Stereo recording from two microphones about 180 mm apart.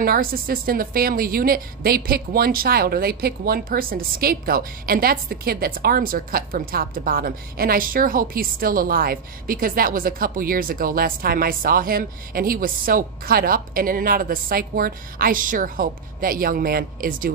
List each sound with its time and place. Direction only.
0.0 s a woman's voice: 55° right (ahead or behind)